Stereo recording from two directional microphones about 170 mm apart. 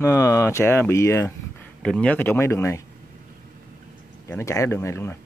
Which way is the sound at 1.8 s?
5° left (ahead or behind).